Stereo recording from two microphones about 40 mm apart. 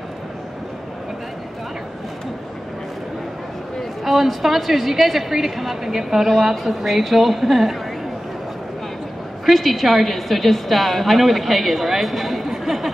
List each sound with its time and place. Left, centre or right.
4.0 s a woman's voice: centre
9.5 s a woman's voice: centre